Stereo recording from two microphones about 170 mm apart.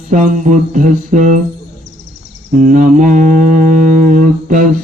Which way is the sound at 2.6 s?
50° right (ahead or behind).